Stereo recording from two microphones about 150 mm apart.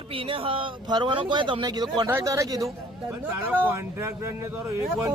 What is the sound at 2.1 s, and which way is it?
Speech, 20° right (ahead or behind).